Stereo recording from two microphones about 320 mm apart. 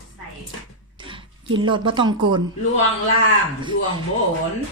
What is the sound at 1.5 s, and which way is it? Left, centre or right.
Speech, centre.